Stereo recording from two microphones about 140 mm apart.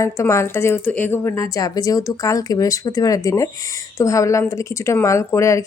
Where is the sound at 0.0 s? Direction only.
20° left (ahead or behind).